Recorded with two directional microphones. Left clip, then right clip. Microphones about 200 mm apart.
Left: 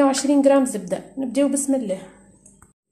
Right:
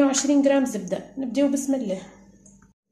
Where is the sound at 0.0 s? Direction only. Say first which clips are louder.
Left 3 dB; 20° left (ahead or behind).